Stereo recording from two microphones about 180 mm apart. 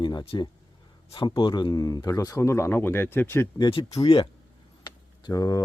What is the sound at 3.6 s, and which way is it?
Speech, 25° left (ahead or behind).